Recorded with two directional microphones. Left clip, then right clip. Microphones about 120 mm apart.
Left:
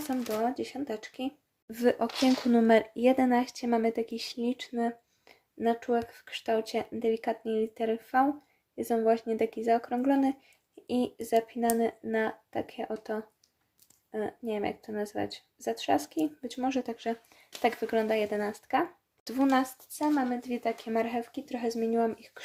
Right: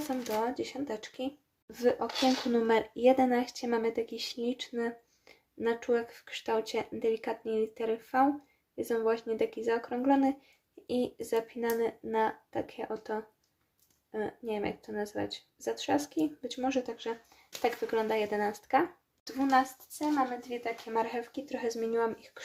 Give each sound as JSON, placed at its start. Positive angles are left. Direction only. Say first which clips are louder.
{"t": 0.1, "sound": "speech", "louder": "left 2 dB", "side_deg": 40}
{"t": 1.7, "sound": "speech", "louder": "left 2 dB", "side_deg": 60}
{"t": 2.3, "sound": "speech", "louder": "left 7 dB", "side_deg": 45}
{"t": 20.9, "sound": "speech", "louder": "left 1 dB", "side_deg": 45}